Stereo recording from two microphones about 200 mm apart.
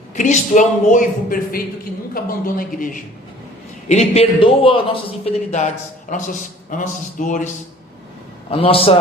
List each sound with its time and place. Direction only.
0.2 s a man's voice: 40° left (ahead or behind)
3.8 s a man's voice: 35° left (ahead or behind)
8.4 s a man's voice: 30° left (ahead or behind)